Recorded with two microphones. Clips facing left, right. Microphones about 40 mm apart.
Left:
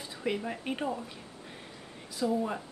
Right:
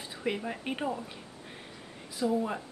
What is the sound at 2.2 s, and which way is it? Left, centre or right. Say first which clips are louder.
Speech: right 1 dB; centre.